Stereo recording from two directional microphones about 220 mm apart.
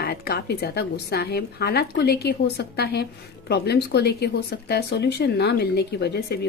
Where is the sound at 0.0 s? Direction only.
45° left (ahead or behind).